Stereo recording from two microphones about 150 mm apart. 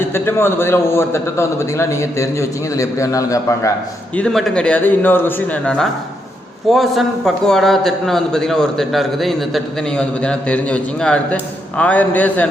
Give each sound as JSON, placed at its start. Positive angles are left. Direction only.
{"t": 0.1, "sound": "a man's voice", "side_deg": 15}
{"t": 4.1, "sound": "a man's voice", "side_deg": 5}